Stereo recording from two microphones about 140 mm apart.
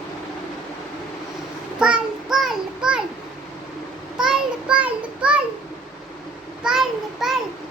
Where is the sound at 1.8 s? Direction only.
5° right (ahead or behind).